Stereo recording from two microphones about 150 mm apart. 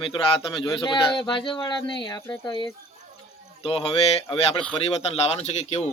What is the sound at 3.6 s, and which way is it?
Speech, 40° left (ahead or behind).